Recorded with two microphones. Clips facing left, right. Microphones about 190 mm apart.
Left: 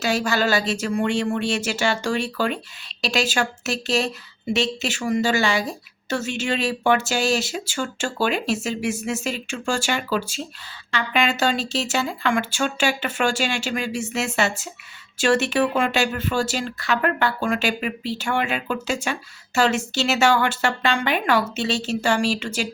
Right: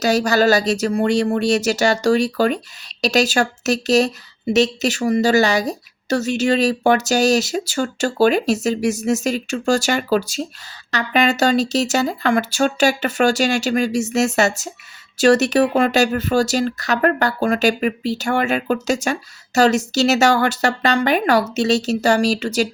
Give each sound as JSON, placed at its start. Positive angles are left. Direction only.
{"t": 0.0, "sound": "a woman's voice", "side_deg": -40}